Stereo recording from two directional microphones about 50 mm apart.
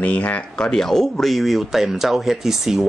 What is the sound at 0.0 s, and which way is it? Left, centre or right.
Speech, left.